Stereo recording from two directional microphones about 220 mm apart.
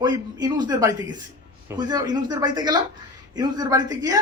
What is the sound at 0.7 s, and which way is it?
A man's voice, 15° right (ahead or behind).